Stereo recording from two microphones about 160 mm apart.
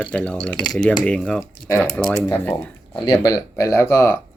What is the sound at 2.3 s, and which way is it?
Speech, 10° left (ahead or behind).